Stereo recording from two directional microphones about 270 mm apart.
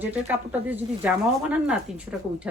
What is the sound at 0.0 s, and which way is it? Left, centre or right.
Speech, centre.